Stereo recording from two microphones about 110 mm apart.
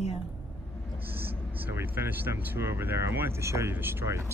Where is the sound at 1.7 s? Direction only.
20° right (ahead or behind).